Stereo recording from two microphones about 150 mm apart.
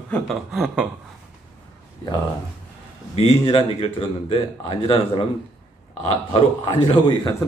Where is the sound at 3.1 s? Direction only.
40° left (ahead or behind).